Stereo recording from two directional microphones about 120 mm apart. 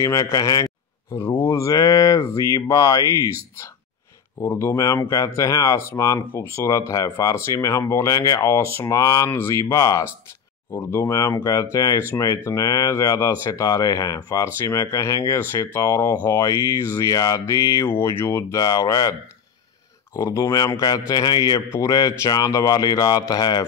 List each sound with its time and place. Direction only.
0.0 s speech: 25° left (ahead or behind)
4.4 s speech: 25° left (ahead or behind)
20.2 s speech: 25° left (ahead or behind)